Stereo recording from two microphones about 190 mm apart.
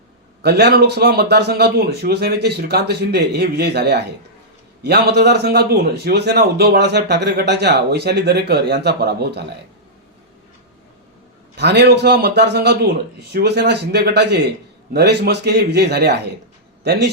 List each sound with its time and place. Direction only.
0.4 s a man's voice: 60° right (ahead or behind)
11.5 s a man's voice: 60° right (ahead or behind)